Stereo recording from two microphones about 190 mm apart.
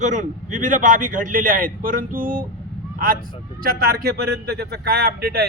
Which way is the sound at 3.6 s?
50° right (ahead or behind).